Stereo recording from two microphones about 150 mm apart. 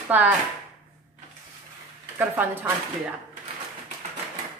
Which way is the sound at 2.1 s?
15° right (ahead or behind).